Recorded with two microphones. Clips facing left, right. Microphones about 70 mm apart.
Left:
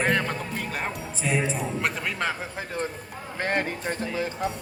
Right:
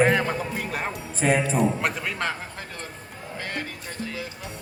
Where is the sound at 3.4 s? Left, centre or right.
Left.